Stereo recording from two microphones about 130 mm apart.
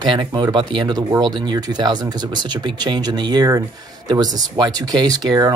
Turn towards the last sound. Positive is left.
turn(degrees=-30)  # may be behind; listen again after turning